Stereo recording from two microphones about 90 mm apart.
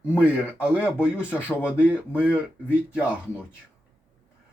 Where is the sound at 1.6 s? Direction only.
15° right (ahead or behind).